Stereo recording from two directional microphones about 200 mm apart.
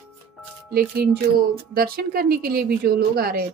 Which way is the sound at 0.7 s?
50° right (ahead or behind).